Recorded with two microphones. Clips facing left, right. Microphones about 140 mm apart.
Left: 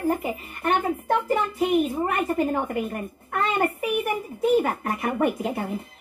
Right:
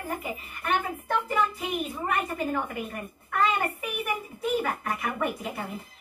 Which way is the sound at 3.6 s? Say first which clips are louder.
Left 8 dB; 50° left (ahead or behind).